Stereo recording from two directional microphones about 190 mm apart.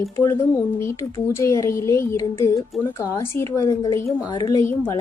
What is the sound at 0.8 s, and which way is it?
Speech, 15° left (ahead or behind).